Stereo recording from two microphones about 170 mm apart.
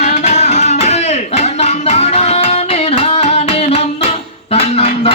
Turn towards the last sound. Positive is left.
turn(degrees=35)  # may be behind; listen again after turning